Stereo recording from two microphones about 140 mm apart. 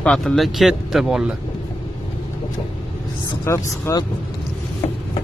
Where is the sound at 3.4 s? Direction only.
20° left (ahead or behind).